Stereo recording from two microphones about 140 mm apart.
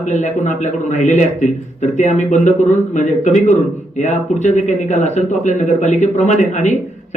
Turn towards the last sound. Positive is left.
turn(degrees=60)  # may be behind; listen again after turning